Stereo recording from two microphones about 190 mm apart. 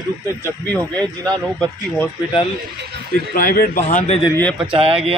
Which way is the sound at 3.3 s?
50° left (ahead or behind).